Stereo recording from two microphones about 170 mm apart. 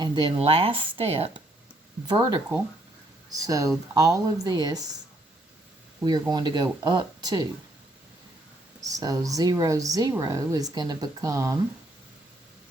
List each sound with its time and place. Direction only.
0.0 s speech: 30° right (ahead or behind)
3.2 s speech: 20° right (ahead or behind)
6.1 s speech: 25° right (ahead or behind)
8.8 s speech: 20° right (ahead or behind)